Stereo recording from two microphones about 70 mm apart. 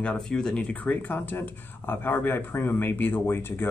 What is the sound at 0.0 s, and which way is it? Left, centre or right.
Speech, centre.